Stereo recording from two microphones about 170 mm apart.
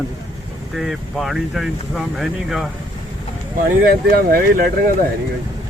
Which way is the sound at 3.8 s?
60° right (ahead or behind).